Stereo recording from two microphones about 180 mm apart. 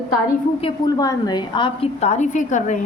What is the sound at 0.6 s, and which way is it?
A woman's voice, 25° left (ahead or behind).